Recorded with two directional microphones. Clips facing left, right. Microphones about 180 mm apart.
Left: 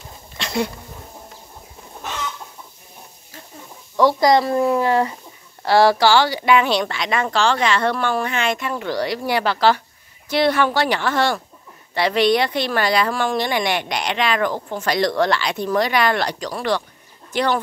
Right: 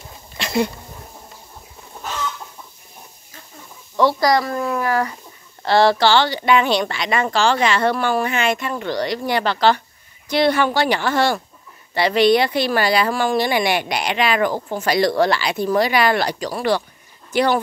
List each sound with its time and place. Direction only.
0.4 s a sound: 5° right (ahead or behind)
3.9 s speech: 15° left (ahead or behind)
5.6 s speech: 10° left (ahead or behind); by 17.6 s 10° right (ahead or behind)